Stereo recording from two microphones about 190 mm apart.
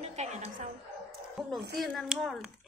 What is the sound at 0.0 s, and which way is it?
Music, 35° right (ahead or behind).